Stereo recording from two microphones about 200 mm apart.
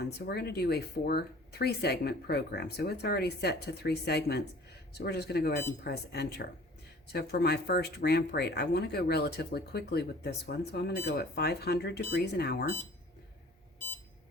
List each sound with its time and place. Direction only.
0.0 s speech: 55° left (ahead or behind)